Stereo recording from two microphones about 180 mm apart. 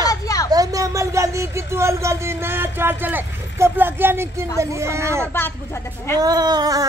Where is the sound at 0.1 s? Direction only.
20° left (ahead or behind).